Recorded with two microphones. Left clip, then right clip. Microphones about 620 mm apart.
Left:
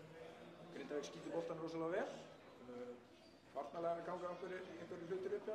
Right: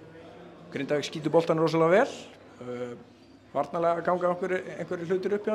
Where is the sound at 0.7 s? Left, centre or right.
Right.